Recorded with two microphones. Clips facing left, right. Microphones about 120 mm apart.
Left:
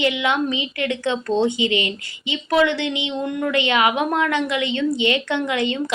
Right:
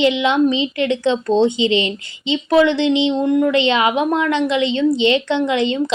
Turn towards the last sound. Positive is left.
turn(degrees=-25)  # may be behind; listen again after turning